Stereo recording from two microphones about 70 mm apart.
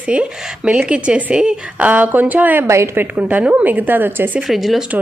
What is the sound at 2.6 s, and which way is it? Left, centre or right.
Speech, right.